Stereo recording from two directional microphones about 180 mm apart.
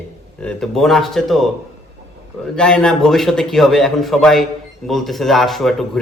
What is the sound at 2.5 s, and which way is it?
A man's voice, 5° left (ahead or behind).